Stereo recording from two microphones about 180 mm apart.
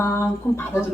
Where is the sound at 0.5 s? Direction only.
15° left (ahead or behind).